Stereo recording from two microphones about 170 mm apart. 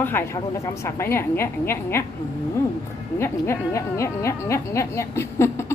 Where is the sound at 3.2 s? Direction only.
15° left (ahead or behind).